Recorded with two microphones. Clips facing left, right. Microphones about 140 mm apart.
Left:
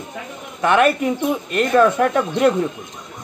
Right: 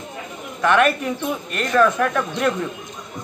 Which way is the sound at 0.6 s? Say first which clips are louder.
Left 2 dB; 20° left (ahead or behind).